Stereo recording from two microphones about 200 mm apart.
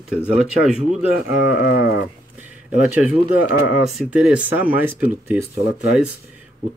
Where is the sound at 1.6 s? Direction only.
50° left (ahead or behind).